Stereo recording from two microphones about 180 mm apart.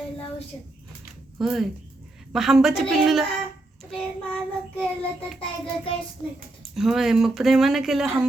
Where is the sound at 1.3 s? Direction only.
5° right (ahead or behind).